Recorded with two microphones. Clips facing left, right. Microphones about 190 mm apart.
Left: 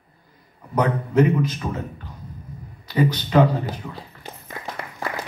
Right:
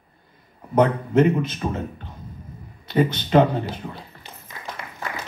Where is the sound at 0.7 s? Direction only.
25° right (ahead or behind).